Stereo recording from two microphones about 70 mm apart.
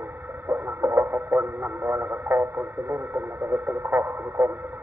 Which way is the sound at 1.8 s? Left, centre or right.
Right.